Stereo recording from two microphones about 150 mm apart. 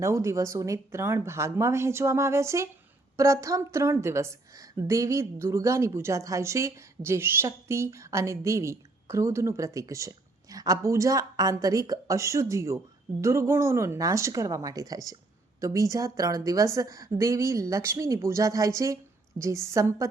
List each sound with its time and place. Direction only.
0.0 s a woman's voice: 20° right (ahead or behind)